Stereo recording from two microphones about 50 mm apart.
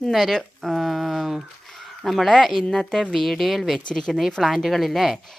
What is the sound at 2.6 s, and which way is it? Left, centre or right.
Speech, centre.